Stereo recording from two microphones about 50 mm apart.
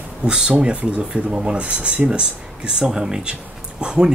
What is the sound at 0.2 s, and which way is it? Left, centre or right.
Speech, centre.